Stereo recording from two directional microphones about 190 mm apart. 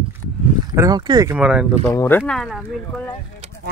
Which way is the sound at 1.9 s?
15° left (ahead or behind).